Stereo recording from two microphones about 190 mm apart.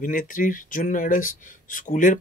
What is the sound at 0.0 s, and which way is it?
Speech, 45° left (ahead or behind).